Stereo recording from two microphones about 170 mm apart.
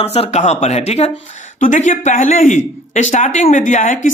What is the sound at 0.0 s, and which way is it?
Speech, 35° left (ahead or behind).